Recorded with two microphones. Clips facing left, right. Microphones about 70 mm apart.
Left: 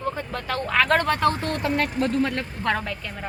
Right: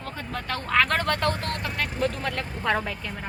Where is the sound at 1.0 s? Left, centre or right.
Centre.